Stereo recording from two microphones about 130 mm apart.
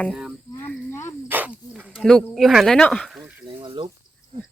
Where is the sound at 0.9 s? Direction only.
20° left (ahead or behind).